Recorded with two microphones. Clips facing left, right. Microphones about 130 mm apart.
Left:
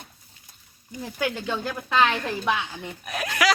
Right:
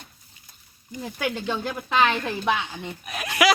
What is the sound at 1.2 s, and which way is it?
Speech, 15° right (ahead or behind).